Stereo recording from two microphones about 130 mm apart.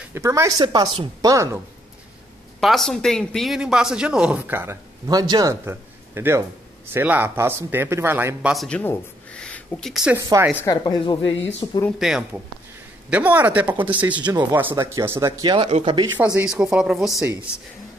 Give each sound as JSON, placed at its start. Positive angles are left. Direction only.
{"t": 0.1, "sound": "speech", "side_deg": -25}
{"t": 2.6, "sound": "a man's voice", "side_deg": 0}
{"t": 8.6, "sound": "speech", "side_deg": 10}
{"t": 10.1, "sound": "a man's voice", "side_deg": -20}
{"t": 10.6, "sound": "a woman's voice", "side_deg": 30}
{"t": 12.0, "sound": "a man's voice", "side_deg": -5}
{"t": 14.2, "sound": "speech", "side_deg": -35}
{"t": 14.5, "sound": "speech", "side_deg": -15}
{"t": 15.4, "sound": "speech", "side_deg": -35}
{"t": 16.3, "sound": "speech", "side_deg": -5}